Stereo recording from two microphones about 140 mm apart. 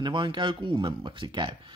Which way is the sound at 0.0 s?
35° right (ahead or behind).